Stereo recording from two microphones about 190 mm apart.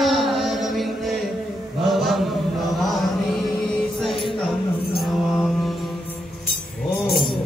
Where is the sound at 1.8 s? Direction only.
Centre (ahead or behind).